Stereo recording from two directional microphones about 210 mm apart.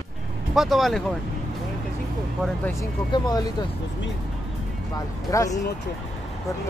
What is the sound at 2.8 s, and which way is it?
Speech, 20° left (ahead or behind).